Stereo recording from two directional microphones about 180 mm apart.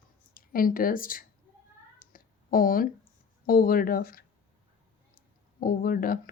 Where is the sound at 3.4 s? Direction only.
50° left (ahead or behind).